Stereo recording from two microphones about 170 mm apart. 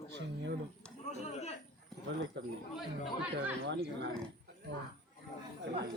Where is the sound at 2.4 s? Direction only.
90° right.